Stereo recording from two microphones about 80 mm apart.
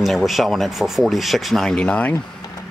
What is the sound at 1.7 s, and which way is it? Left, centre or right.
Speech, centre.